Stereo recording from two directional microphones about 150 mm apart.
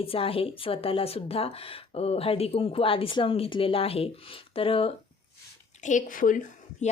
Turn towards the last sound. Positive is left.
turn(degrees=50)  # may be behind; listen again after turning